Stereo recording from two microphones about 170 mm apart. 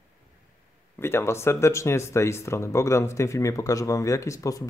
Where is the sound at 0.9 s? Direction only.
15° left (ahead or behind).